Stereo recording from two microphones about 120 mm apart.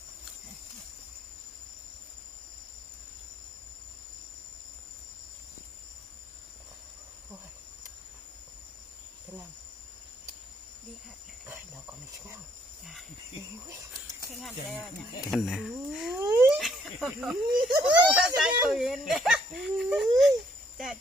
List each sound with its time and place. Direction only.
12.8 s speech: centre (ahead or behind)
13.7 s whispering: 30° right (ahead or behind)
14.3 s speech: centre (ahead or behind)